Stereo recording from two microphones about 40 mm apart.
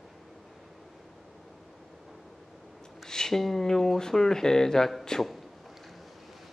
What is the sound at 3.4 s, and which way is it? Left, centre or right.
Speech, centre.